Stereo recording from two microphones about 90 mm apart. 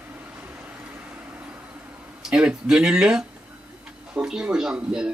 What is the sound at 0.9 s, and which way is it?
Vehicle, 15° right (ahead or behind).